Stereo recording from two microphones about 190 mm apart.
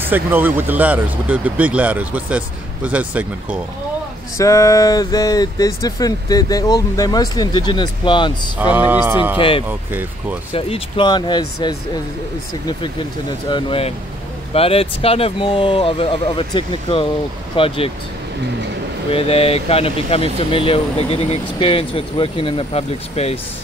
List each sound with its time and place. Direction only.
0.0 s speech: 10° right (ahead or behind)
4.4 s speech: 15° left (ahead or behind)
8.5 s speech: 10° right (ahead or behind)
9.4 s speech: 30° left (ahead or behind)
13.5 s speech: 25° left (ahead or behind)
19.1 s speech: 30° left (ahead or behind)